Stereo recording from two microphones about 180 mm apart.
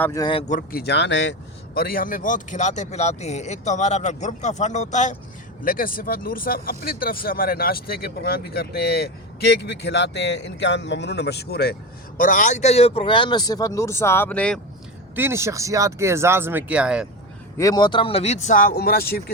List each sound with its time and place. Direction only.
0.0 s speech: 20° left (ahead or behind)
0.4 s a man's voice: 50° left (ahead or behind); by 14.6 s 5° left (ahead or behind)
15.1 s speech: 15° right (ahead or behind)
17.6 s a man's voice: 20° left (ahead or behind); by 19.2 s 55° left (ahead or behind)